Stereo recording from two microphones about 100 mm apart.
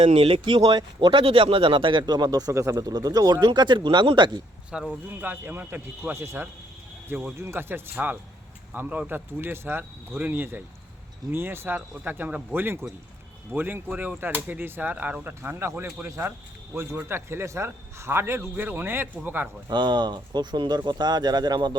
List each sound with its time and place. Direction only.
0.0 s speech: 70° right (ahead or behind)
0.6 s speech: 45° right (ahead or behind)
1.2 s speech: 65° right (ahead or behind)
4.7 s speech: 5° right (ahead or behind)
5.2 s a man's voice: 20° right (ahead or behind)
7.1 s speech: 15° right (ahead or behind)
7.3 s a man's voice: 25° right (ahead or behind)
19.6 s speech: 50° right (ahead or behind)